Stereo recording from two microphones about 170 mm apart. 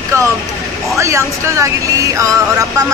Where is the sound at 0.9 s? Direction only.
15° right (ahead or behind).